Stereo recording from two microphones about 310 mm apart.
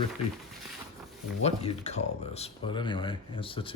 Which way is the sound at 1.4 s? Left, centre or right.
Centre.